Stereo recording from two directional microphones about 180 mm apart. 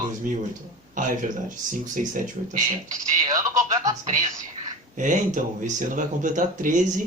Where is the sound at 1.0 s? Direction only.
45° right (ahead or behind).